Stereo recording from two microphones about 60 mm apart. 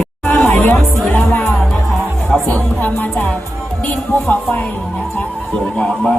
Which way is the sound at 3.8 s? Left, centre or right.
Left.